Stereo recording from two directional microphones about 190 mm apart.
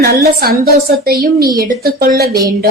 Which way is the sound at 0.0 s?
55° right (ahead or behind).